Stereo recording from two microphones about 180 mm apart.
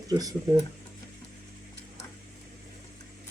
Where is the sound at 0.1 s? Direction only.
20° right (ahead or behind).